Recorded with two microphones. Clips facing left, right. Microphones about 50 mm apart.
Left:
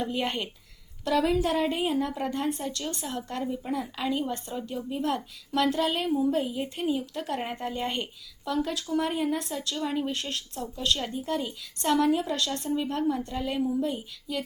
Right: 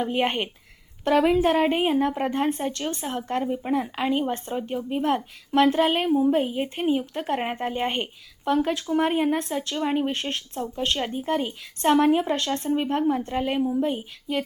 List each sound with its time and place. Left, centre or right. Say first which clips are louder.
0.0 s a woman's voice: right 5 dB; right
13.6 s a woman's voice: right 4 dB; right